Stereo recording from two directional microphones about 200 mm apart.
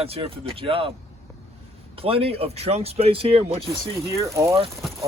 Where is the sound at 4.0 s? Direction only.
15° right (ahead or behind).